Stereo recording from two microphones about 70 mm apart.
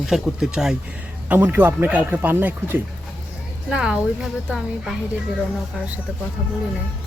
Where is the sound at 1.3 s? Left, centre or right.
Right.